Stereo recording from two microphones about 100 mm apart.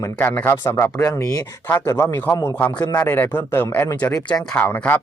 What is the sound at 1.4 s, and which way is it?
Speech, 25° left (ahead or behind).